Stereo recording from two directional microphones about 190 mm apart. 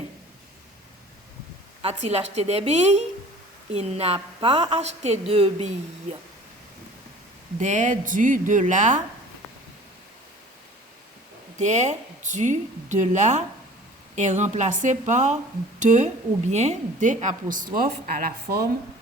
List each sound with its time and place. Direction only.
1.8 s a woman's voice: 35° right (ahead or behind)
7.6 s a woman's voice: 40° right (ahead or behind)
11.5 s a woman's voice: 40° right (ahead or behind); by 18.7 s 55° right (ahead or behind)